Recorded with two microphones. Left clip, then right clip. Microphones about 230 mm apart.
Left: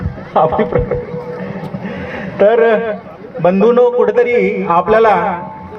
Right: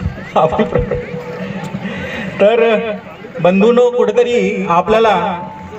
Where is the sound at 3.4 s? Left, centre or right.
Left.